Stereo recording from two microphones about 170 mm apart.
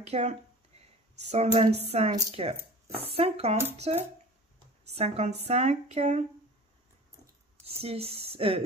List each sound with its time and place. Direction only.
0.0 s speech: 40° right (ahead or behind)
0.7 s a sound: 40° right (ahead or behind)
1.2 s speech: 40° right (ahead or behind)
7.6 s speech: 35° right (ahead or behind)